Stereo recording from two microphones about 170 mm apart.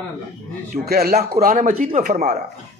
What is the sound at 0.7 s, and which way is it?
A man's voice, 65° right (ahead or behind).